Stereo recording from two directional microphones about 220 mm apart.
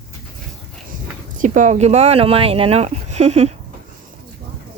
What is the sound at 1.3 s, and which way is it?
Speech, 35° right (ahead or behind).